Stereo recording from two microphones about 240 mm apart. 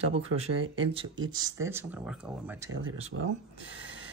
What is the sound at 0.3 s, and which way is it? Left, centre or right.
Speech, right.